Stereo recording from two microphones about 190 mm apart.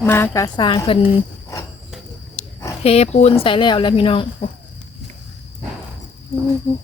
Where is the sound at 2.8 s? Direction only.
30° left (ahead or behind).